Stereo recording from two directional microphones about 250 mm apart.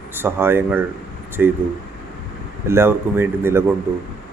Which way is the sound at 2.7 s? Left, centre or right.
Centre.